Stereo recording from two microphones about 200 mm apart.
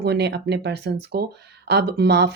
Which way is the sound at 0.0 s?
55° right (ahead or behind).